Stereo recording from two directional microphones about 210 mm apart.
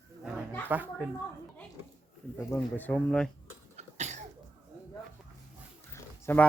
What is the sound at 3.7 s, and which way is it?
Cough, 35° right (ahead or behind).